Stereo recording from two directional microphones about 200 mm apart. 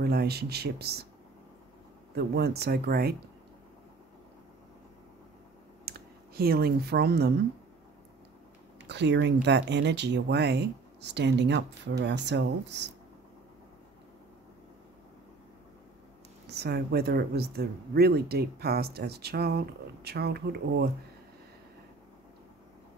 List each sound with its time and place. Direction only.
0.0 s speech: 50° right (ahead or behind)
2.1 s speech: 55° right (ahead or behind)
5.9 s speech: 50° right (ahead or behind)
8.8 s speech: 60° right (ahead or behind)
16.4 s speech: 55° right (ahead or behind)